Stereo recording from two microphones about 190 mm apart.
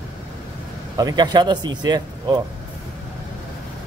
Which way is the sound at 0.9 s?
20° right (ahead or behind).